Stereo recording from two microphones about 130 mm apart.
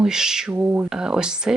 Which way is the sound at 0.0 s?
5° right (ahead or behind).